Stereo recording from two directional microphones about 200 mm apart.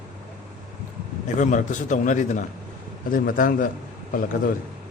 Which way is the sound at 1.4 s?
40° left (ahead or behind).